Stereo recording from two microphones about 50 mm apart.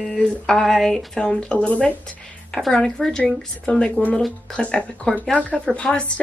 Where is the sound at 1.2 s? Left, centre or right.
Left.